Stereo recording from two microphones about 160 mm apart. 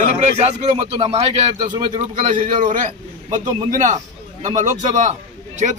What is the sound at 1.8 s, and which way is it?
A man's voice, 50° right (ahead or behind).